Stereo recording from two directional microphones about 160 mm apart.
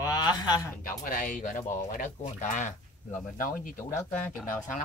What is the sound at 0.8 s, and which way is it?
Speech, 55° left (ahead or behind).